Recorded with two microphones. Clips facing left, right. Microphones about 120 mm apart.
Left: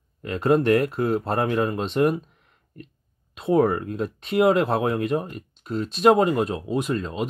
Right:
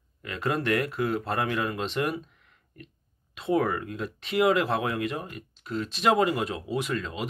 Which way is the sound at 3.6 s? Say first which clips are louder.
Left 7 dB; 30° left (ahead or behind).